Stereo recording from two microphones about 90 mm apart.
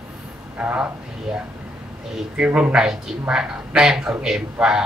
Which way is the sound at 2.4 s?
15° right (ahead or behind).